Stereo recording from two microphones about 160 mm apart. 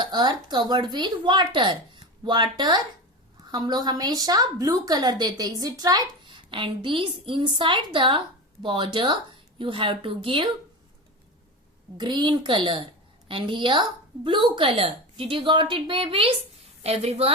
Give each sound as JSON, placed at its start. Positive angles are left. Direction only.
{"t": 0.0, "sound": "a woman's voice", "side_deg": -25}
{"t": 11.9, "sound": "a woman's voice", "side_deg": -30}